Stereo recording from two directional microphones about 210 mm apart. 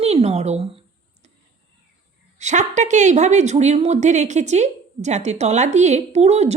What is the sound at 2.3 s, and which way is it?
Speech, 35° right (ahead or behind).